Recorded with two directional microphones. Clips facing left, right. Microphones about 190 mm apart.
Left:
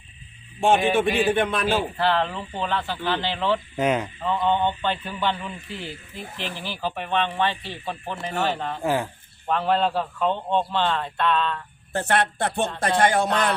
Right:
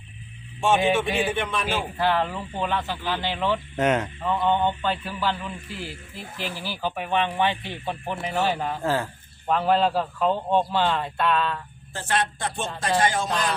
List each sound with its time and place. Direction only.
0.6 s speech: 55° left (ahead or behind)
1.6 s speech: 15° right (ahead or behind)
3.8 s a man's voice: 5° left (ahead or behind)
4.3 s speech: 10° right (ahead or behind)
8.8 s speech: 15° left (ahead or behind)
9.5 s a man's voice: centre (ahead or behind)
11.9 s speech: 60° left (ahead or behind)